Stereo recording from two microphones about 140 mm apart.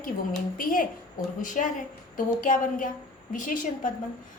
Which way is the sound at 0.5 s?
80° left.